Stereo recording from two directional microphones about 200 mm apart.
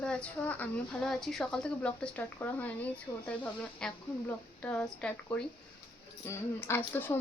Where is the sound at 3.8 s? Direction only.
5° left (ahead or behind).